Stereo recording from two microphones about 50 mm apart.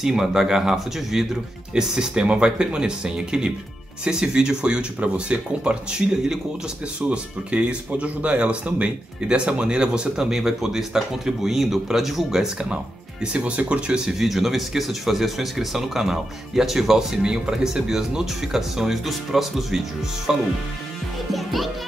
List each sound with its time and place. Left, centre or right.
0.0 s speech: centre
13.2 s speech: right
21.3 s music: centre